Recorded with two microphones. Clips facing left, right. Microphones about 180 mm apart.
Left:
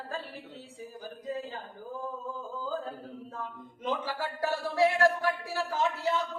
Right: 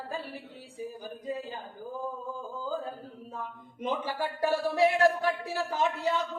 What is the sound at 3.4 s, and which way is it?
Speech, 15° right (ahead or behind).